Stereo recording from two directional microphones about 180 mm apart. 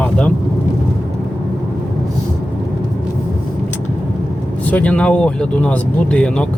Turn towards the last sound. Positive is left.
turn(degrees=5)  # may be behind; listen again after turning